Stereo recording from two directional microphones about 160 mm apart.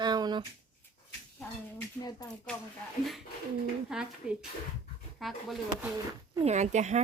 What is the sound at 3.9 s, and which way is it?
Speech, 5° right (ahead or behind).